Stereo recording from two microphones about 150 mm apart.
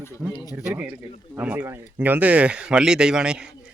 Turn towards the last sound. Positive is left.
turn(degrees=-5)  # may be behind; listen again after turning